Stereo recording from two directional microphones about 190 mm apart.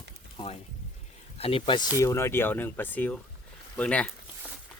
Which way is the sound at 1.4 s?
30° left (ahead or behind).